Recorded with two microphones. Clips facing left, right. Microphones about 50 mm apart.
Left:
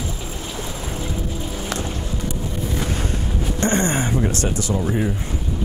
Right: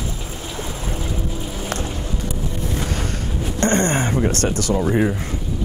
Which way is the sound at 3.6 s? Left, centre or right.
Right.